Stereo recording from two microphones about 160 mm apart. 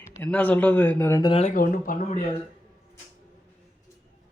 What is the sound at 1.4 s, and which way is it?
Speech, 60° left (ahead or behind).